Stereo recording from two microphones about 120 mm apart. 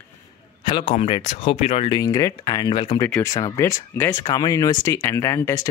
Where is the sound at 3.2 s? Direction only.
30° left (ahead or behind).